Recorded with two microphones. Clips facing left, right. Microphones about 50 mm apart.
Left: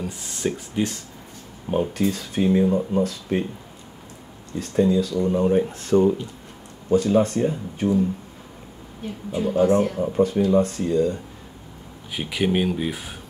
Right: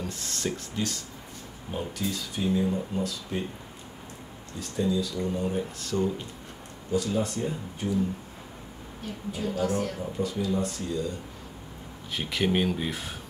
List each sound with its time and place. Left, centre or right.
0.0 s speech: centre
1.7 s speech: left
4.6 s speech: left
5.6 s speech: left
6.9 s speech: left
9.3 s speech: left
10.1 s speech: left
12.1 s speech: centre